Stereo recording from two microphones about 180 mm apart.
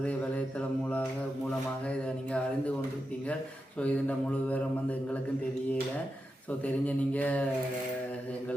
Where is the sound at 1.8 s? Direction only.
5° left (ahead or behind).